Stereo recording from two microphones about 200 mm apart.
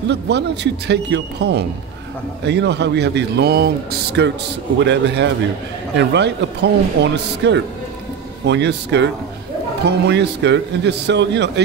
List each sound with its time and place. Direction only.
0.1 s speech: 60° right (ahead or behind)